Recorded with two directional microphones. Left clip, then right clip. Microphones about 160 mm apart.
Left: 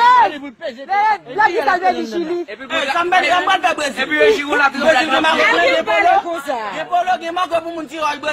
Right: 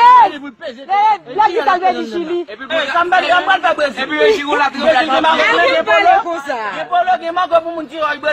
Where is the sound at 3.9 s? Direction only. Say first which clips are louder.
Right 1 dB; 20° left (ahead or behind).